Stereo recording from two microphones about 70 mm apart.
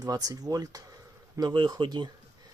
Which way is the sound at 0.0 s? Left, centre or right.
Right.